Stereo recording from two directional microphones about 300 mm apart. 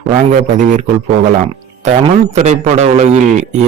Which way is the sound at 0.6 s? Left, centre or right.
Right.